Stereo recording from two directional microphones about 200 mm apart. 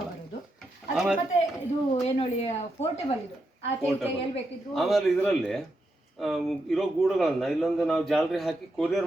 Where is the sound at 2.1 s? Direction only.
30° left (ahead or behind).